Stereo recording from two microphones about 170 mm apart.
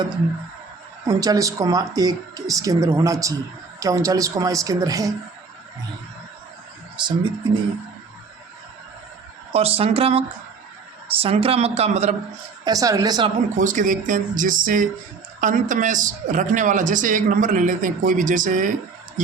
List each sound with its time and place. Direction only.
1.0 s a woman's voice: 20° right (ahead or behind)
7.0 s a woman's voice: 30° right (ahead or behind)
9.5 s speech: 35° right (ahead or behind)
12.6 s a woman's voice: 20° right (ahead or behind)
13.6 s a man's voice: 50° right (ahead or behind)